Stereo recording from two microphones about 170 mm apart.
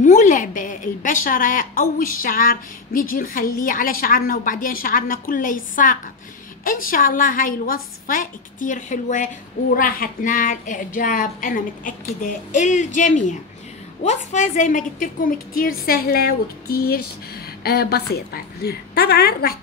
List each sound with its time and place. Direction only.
0.0 s a woman's voice: 50° left (ahead or behind); by 19.5 s 65° left (ahead or behind)